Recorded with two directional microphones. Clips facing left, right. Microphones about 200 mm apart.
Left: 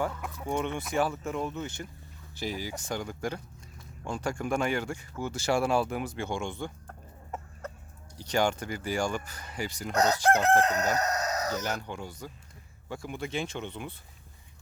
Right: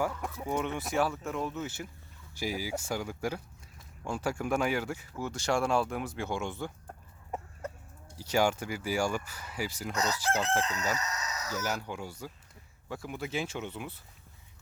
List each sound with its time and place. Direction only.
0.4 s speech: 5° right (ahead or behind)
8.2 s speech: 5° right (ahead or behind)
9.9 s chicken: 60° left (ahead or behind)
11.6 s speech: 5° right (ahead or behind)